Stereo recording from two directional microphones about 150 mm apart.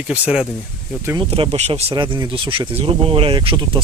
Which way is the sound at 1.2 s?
40° right (ahead or behind).